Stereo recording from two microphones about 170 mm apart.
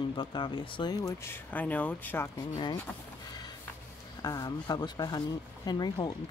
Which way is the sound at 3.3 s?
25° left (ahead or behind).